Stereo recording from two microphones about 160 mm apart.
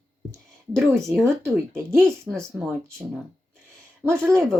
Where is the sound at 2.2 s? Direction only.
Centre (ahead or behind).